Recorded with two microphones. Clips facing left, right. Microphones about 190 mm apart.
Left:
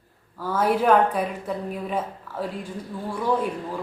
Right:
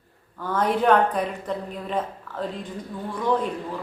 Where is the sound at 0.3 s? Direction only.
5° left (ahead or behind).